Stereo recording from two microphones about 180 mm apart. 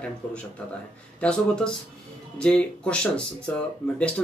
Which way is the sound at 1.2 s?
5° left (ahead or behind).